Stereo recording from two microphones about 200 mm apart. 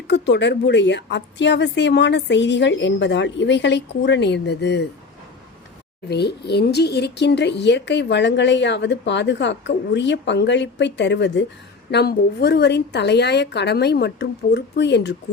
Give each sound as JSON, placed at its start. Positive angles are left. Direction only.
{"t": 0.1, "sound": "speech", "side_deg": 60}
{"t": 6.1, "sound": "speech", "side_deg": 55}